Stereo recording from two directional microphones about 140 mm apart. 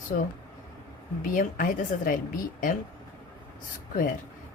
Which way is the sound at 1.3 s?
75° left (ahead or behind).